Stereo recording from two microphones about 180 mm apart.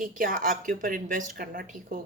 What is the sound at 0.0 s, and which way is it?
Speech, 50° right (ahead or behind).